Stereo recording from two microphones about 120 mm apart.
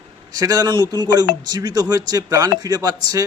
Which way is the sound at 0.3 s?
30° right (ahead or behind).